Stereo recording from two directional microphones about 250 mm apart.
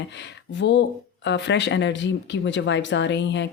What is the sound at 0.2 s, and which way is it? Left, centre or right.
Speech, left.